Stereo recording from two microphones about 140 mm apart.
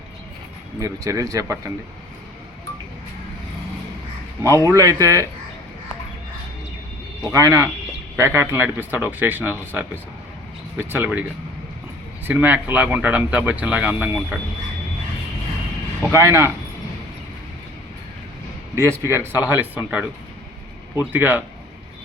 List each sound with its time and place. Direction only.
0.8 s speech: 20° right (ahead or behind)
4.4 s speech: 20° right (ahead or behind)
7.3 s speech: 20° right (ahead or behind)
12.3 s speech: 10° right (ahead or behind)
16.1 s speech: 20° right (ahead or behind)
19.0 s speech: 15° right (ahead or behind)